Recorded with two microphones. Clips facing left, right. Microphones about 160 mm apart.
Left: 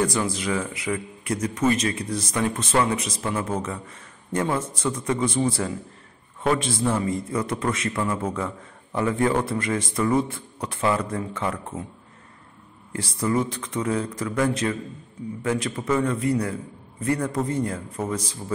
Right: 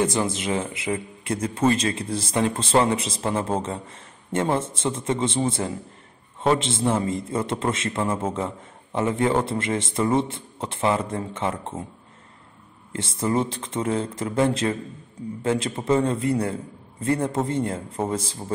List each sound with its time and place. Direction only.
0.0 s a man's voice: 25° right (ahead or behind)
12.9 s a man's voice: 25° right (ahead or behind)